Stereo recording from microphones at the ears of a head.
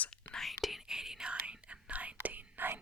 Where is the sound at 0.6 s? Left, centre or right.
Centre.